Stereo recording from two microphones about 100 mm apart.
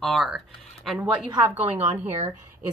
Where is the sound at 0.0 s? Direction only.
Centre (ahead or behind).